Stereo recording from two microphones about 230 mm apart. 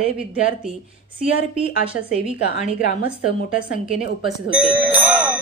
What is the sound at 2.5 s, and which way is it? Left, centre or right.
Speech, left.